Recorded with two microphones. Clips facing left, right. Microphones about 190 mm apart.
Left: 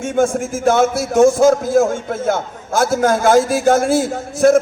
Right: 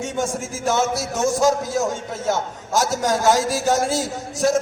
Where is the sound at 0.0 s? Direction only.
55° left (ahead or behind).